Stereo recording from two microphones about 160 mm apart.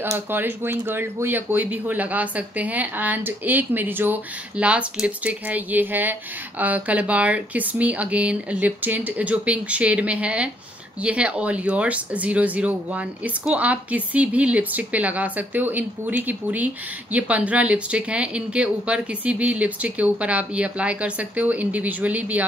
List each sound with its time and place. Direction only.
0.0 s speech: 15° right (ahead or behind)